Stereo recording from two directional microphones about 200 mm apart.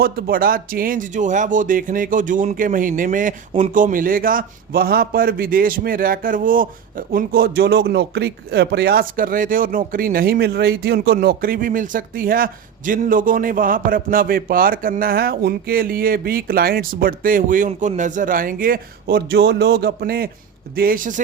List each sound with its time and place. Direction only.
0.0 s a man's voice: 50° right (ahead or behind)